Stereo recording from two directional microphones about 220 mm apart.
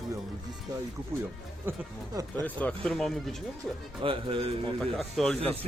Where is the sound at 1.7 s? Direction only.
10° right (ahead or behind).